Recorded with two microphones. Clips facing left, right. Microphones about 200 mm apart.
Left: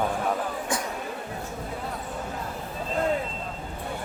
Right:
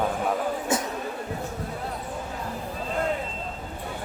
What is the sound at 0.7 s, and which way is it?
Music, 25° right (ahead or behind).